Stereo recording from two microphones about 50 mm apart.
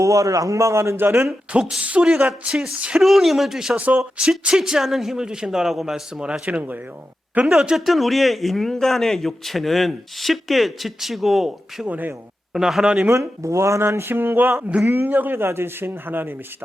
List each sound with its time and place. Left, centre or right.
0.0 s a man's voice: right
1.8 s speech: right
3.0 s a man's voice: centre
3.8 s speech: right
4.2 s speech: centre
6.4 s speech: right
7.4 s speech: centre
7.9 s a man's voice: centre
11.9 s speech: right
12.5 s speech: centre
13.1 s speech: right
15.1 s speech: right